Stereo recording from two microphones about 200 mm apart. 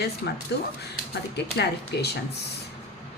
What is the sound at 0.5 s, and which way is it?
Speech, 55° left (ahead or behind).